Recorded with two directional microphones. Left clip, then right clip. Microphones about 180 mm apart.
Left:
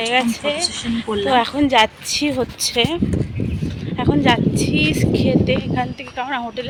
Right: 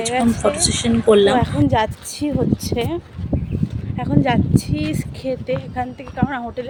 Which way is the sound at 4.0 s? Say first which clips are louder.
Left 3 dB; centre (ahead or behind).